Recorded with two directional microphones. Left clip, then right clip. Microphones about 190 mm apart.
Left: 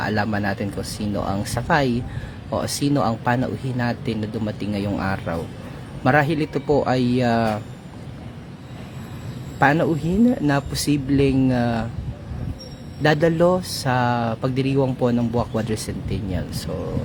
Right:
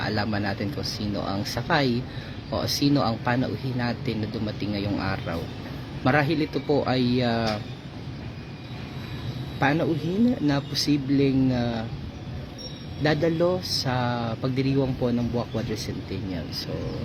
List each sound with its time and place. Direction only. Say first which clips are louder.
0.0 s speech: left 4 dB; 20° left (ahead or behind)
9.6 s speech: left 6 dB; 25° left (ahead or behind)
13.0 s speech: left 5 dB; 25° left (ahead or behind)